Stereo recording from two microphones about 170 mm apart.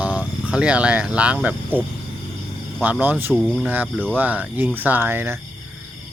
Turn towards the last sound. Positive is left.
turn(degrees=-15)  # may be behind; listen again after turning